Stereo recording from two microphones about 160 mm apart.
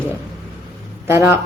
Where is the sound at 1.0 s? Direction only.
15° right (ahead or behind).